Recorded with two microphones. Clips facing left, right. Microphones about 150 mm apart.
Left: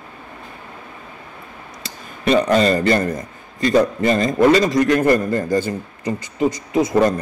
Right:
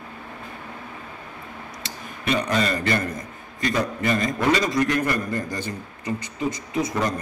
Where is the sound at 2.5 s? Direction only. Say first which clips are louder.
Left 7 dB; 30° left (ahead or behind).